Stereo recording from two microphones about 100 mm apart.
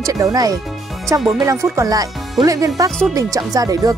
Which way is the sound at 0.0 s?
35° right (ahead or behind).